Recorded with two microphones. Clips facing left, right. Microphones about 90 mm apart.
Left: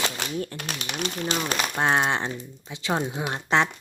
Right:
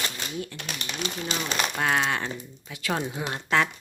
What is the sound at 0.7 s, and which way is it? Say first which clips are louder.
Speech: left 3 dB; 60° left (ahead or behind).